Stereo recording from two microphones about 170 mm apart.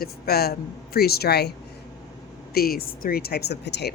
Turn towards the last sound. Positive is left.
turn(degrees=80)